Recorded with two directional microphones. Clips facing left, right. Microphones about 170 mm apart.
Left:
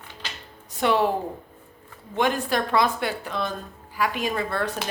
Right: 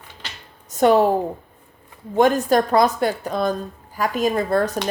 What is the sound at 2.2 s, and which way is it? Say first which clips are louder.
A woman's voice: right 7 dB; 45° right (ahead or behind).